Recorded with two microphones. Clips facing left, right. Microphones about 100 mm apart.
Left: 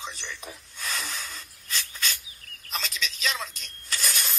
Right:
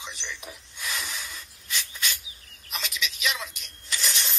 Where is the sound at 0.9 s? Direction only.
50° left (ahead or behind).